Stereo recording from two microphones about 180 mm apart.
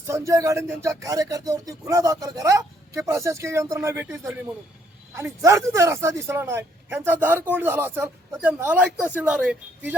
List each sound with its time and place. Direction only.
0.1 s speech: 15° right (ahead or behind)